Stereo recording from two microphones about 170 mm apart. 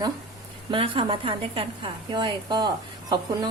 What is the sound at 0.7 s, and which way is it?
A woman's voice, 30° right (ahead or behind).